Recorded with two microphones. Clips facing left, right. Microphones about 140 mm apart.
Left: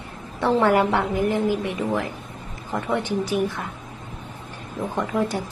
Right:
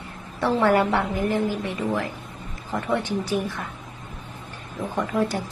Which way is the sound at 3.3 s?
15° left (ahead or behind).